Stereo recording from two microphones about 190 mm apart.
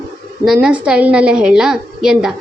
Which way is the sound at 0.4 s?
5° right (ahead or behind).